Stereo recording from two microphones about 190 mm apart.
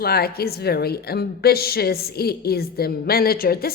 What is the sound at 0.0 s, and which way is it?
A woman's voice, 55° left (ahead or behind).